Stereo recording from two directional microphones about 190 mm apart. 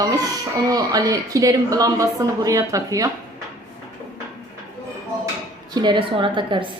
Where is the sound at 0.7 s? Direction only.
20° right (ahead or behind).